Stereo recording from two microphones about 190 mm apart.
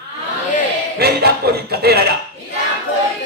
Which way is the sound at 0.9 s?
55° right (ahead or behind).